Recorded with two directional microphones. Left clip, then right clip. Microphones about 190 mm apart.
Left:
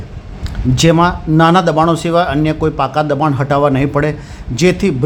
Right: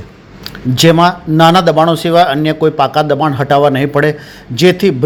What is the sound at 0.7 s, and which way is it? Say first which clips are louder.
A man's voice: right 3 dB; 5° right (ahead or behind).